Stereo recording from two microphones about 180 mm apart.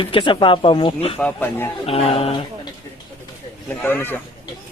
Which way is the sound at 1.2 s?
10° left (ahead or behind).